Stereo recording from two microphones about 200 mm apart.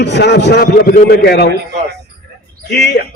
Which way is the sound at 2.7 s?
55° left (ahead or behind).